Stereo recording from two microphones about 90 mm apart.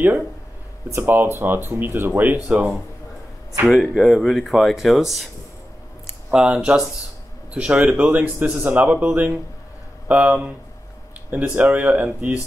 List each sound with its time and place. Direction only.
0.8 s speech: 25° right (ahead or behind); by 2.8 s 10° right (ahead or behind)
3.6 s speech: centre (ahead or behind)
6.3 s speech: 10° right (ahead or behind)